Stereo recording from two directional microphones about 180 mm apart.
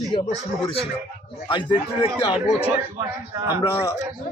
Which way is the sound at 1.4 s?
25° left (ahead or behind).